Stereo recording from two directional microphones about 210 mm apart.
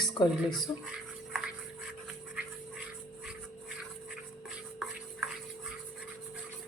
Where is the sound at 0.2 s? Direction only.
20° left (ahead or behind).